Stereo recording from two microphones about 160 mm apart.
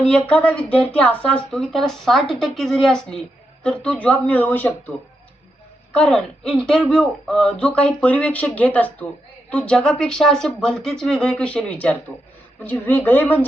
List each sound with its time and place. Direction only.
0.1 s a woman's voice: 10° left (ahead or behind)